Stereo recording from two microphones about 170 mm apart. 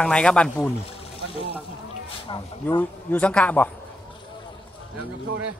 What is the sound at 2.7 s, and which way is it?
Speech, 10° left (ahead or behind).